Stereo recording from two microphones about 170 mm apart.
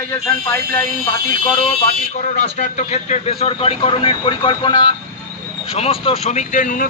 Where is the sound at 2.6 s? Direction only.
45° left (ahead or behind).